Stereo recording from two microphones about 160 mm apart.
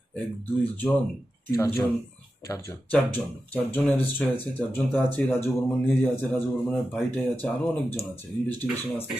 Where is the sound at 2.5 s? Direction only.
15° left (ahead or behind).